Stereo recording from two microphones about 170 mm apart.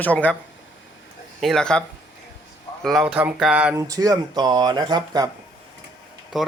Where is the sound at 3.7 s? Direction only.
20° right (ahead or behind).